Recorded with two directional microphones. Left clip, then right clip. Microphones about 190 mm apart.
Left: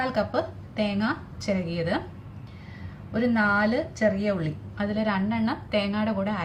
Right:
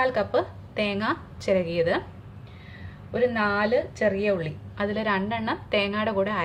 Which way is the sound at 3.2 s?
30° right (ahead or behind).